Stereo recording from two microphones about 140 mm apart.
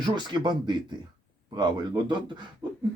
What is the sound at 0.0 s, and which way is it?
Speech, 35° right (ahead or behind).